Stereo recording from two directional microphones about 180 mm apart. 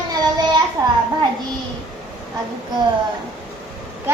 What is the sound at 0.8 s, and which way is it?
Speech, 15° right (ahead or behind).